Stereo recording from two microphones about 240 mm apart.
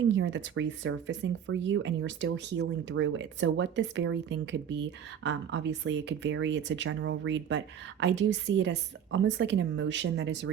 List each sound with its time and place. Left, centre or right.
0.1 s speech: right